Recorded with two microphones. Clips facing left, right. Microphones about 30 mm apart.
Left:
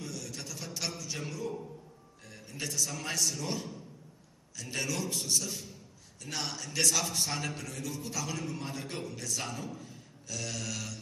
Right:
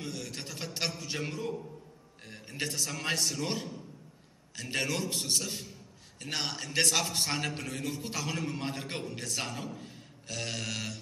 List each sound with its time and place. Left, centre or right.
0.0 s a sound: right
2.2 s a man's voice: right
7.1 s a man's voice: right